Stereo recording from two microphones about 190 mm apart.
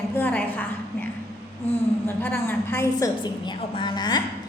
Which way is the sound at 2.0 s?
10° left (ahead or behind).